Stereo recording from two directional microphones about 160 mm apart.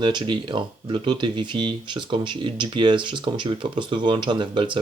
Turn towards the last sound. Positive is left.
turn(degrees=-30)  # may be behind; listen again after turning